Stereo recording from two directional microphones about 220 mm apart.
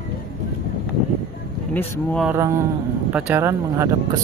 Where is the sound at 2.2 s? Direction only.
10° right (ahead or behind).